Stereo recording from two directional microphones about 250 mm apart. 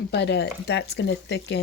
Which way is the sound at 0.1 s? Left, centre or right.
Left.